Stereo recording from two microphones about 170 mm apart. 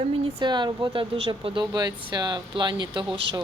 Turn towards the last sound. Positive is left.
turn(degrees=-30)  # may be behind; listen again after turning